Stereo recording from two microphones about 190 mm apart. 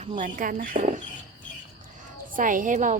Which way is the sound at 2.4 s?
45° right (ahead or behind).